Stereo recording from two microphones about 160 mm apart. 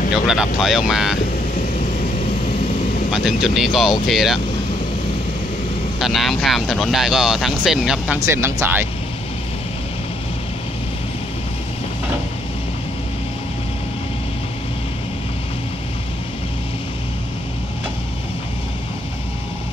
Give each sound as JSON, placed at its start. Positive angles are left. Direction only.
{"t": 0.1, "sound": "speech", "side_deg": -5}
{"t": 3.4, "sound": "speech", "side_deg": 0}
{"t": 5.9, "sound": "speech", "side_deg": 0}
{"t": 8.2, "sound": "speech", "side_deg": -15}